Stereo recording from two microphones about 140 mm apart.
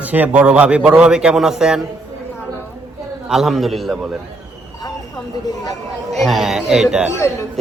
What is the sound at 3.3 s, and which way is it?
Speech, centre (ahead or behind).